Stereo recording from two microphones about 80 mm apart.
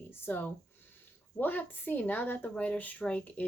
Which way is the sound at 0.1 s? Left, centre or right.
Left.